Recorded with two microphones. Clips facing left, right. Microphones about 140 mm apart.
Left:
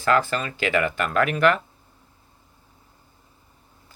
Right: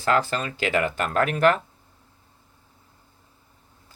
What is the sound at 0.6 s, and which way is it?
Speech, 40° right (ahead or behind).